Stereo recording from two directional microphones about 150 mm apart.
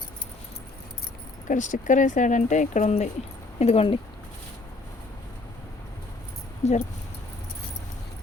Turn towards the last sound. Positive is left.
turn(degrees=45)  # may be behind; listen again after turning